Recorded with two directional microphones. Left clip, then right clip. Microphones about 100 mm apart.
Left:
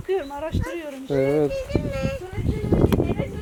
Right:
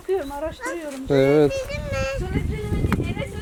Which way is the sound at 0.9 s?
65° right (ahead or behind).